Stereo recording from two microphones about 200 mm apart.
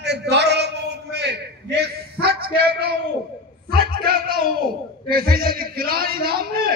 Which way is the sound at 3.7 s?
50° right (ahead or behind).